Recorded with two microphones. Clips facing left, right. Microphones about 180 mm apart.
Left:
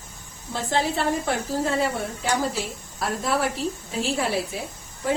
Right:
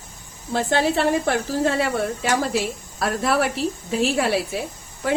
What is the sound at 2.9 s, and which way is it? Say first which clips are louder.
A woman's voice: right 4 dB; 75° right (ahead or behind).